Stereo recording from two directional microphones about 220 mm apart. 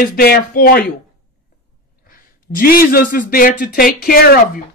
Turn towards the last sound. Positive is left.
turn(degrees=45)  # may be behind; listen again after turning